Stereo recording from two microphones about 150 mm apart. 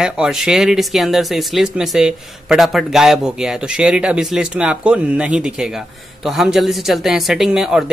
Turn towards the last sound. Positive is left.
turn(degrees=-5)  # may be behind; listen again after turning